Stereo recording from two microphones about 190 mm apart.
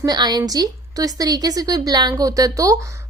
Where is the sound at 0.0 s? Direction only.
20° right (ahead or behind).